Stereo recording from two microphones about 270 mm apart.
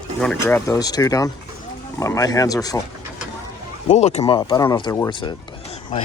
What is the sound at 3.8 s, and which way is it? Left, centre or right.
Speech, left.